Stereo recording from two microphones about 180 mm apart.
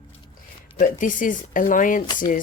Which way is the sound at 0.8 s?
45° left (ahead or behind).